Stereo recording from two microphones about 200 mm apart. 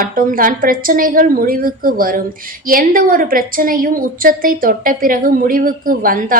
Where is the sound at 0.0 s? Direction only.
45° right (ahead or behind).